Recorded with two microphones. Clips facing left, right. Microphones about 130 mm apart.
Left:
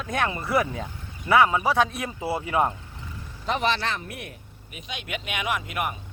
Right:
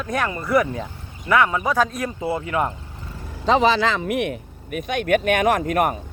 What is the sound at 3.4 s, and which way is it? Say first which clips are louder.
Speech: right 8 dB; 90° right.